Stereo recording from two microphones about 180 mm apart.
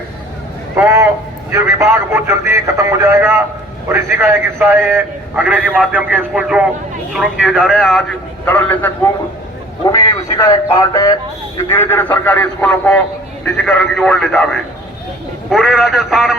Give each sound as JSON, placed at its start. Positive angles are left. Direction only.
{"t": 0.8, "sound": "a man's voice", "side_deg": -15}
{"t": 8.4, "sound": "speech", "side_deg": 10}
{"t": 15.4, "sound": "speech", "side_deg": 0}